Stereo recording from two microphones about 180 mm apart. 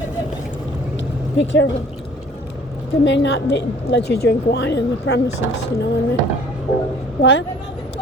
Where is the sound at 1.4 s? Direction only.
90° left.